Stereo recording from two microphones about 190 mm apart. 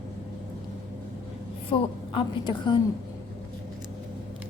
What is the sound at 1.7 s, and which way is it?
A woman's voice, 30° left (ahead or behind).